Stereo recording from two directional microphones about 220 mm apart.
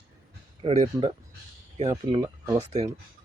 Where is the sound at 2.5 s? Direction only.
25° right (ahead or behind).